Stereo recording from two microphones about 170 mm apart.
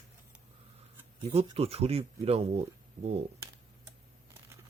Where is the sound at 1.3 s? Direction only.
35° right (ahead or behind).